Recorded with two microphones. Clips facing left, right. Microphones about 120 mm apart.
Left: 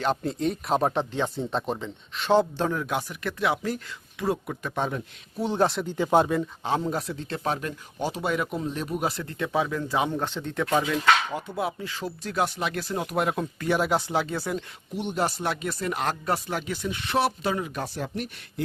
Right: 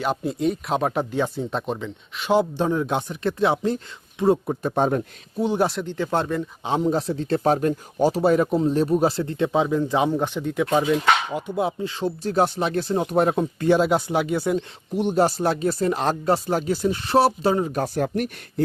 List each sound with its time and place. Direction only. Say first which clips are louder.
0.0 s speech: right 3 dB; 10° right (ahead or behind); by 5.0 s 45° right (ahead or behind)
5.4 s speech: right 3 dB; 15° right (ahead or behind)
5.6 s speech: right 1 dB; 5° left (ahead or behind)
6.7 s speech: right 6 dB; 20° right (ahead or behind)
7.1 s speech: right 9 dB; 35° right (ahead or behind); by 14.6 s 20° right (ahead or behind)
14.9 s speech: right 7 dB; 40° right (ahead or behind)